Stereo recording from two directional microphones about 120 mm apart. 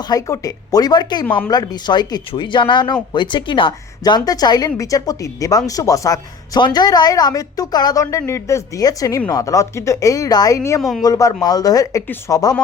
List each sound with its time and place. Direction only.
0.1 s speech: 30° left (ahead or behind)
10.8 s speech: centre (ahead or behind)
11.0 s speech: 30° left (ahead or behind)